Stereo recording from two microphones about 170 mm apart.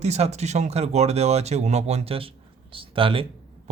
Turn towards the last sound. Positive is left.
turn(degrees=-30)  # may be behind; listen again after turning